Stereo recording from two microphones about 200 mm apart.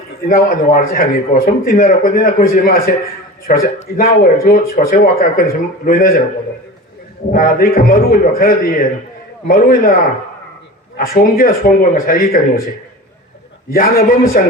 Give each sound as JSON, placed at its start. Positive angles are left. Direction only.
{"t": 0.3, "sound": "speech", "side_deg": 45}
{"t": 7.3, "sound": "speech", "side_deg": 45}
{"t": 10.9, "sound": "speech", "side_deg": 45}
{"t": 13.7, "sound": "speech", "side_deg": 45}